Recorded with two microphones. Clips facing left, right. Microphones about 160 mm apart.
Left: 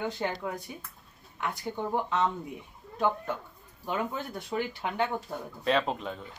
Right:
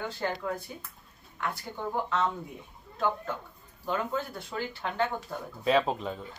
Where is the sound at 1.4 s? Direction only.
20° left (ahead or behind).